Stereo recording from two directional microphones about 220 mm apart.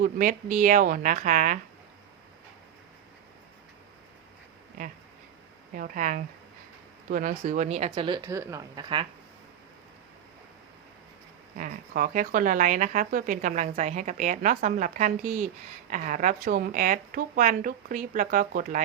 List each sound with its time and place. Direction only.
0.0 s speech: 40° right (ahead or behind)
5.7 s a woman's voice: 40° right (ahead or behind); by 9.0 s 20° right (ahead or behind)
11.5 s speech: 40° right (ahead or behind)